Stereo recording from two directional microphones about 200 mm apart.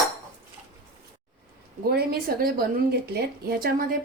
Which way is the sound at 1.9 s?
50° right (ahead or behind).